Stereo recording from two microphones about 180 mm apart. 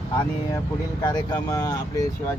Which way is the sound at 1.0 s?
20° left (ahead or behind).